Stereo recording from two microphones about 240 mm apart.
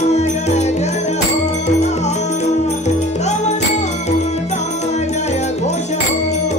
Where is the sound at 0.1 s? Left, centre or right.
Left.